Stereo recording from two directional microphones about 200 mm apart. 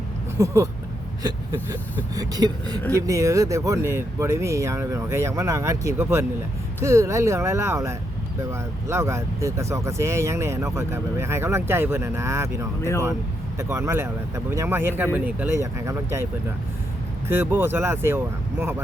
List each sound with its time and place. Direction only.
0.3 s speech: 15° right (ahead or behind)
2.1 s speech: 20° right (ahead or behind)
17.2 s speech: 10° right (ahead or behind)